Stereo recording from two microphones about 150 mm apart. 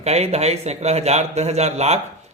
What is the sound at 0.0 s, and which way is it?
A man's voice, 45° right (ahead or behind).